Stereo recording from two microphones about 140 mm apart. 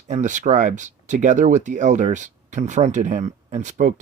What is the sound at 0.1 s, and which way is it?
Speech, 60° right (ahead or behind).